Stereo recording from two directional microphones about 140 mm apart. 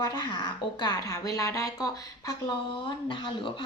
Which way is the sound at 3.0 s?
35° left (ahead or behind).